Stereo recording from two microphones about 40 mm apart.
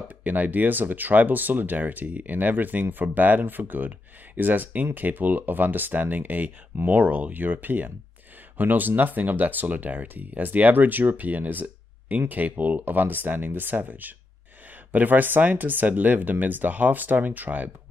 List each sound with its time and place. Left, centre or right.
0.2 s speech: right